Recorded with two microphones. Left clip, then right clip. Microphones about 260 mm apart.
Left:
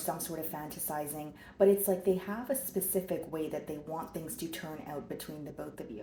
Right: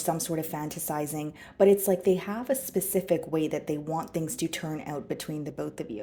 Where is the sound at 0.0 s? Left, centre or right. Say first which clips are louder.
Right 7 dB; right.